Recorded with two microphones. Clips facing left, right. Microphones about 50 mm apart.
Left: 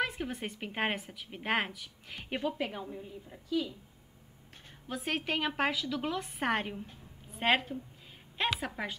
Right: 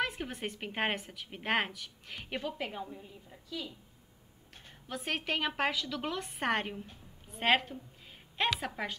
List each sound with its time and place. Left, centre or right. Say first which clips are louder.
0.0 s a woman's voice: left 1 dB; centre
4.8 s a woman's voice: left 1 dB; centre